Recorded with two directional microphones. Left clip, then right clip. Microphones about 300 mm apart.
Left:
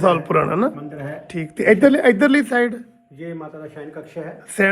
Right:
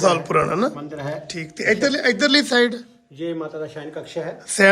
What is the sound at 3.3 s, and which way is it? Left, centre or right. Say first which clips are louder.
Speech: right 5 dB; right.